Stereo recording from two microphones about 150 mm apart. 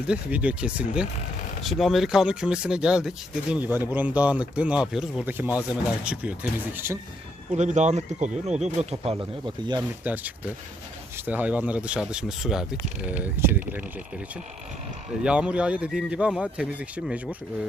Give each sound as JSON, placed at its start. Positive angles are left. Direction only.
{"t": 0.1, "sound": "speech", "side_deg": -10}
{"t": 7.5, "sound": "speech", "side_deg": -50}
{"t": 10.0, "sound": "speech", "side_deg": -10}
{"t": 15.2, "sound": "speech", "side_deg": -5}